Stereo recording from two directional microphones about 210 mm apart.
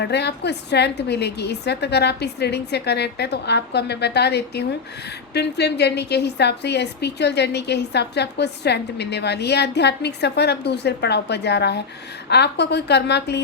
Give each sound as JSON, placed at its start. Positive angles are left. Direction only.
{"t": 0.0, "sound": "a woman's voice", "side_deg": 55}